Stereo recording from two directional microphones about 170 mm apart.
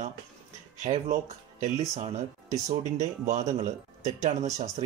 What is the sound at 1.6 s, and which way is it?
Speech, 35° right (ahead or behind).